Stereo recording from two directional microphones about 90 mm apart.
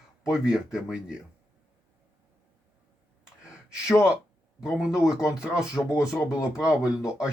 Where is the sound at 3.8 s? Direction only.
30° left (ahead or behind).